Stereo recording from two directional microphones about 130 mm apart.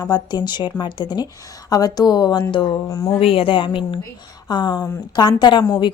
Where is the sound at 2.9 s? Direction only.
25° left (ahead or behind).